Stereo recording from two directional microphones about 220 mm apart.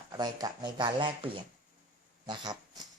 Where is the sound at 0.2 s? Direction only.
15° right (ahead or behind).